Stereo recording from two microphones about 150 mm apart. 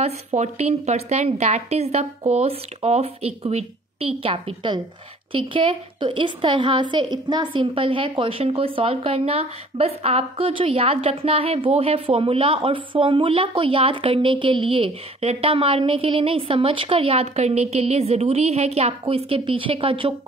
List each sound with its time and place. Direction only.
0.0 s a woman's voice: 45° right (ahead or behind)